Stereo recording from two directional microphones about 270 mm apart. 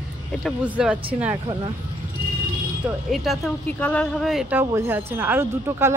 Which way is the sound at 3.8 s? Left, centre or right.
Centre.